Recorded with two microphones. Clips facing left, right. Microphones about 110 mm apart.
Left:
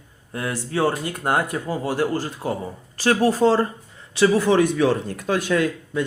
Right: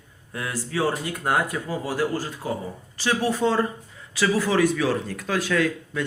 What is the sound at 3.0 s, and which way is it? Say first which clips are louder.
Speech: left 5 dB; 40° left (ahead or behind).